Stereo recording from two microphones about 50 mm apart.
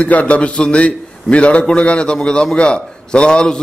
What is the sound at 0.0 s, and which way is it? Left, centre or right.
A man's voice, left.